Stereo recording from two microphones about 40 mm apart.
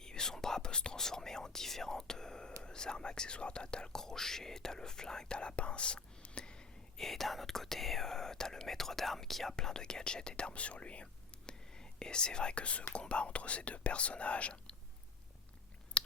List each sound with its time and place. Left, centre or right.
0.0 s whispering: centre
6.9 s speech: centre; by 14.8 s left
16.0 s chewing: left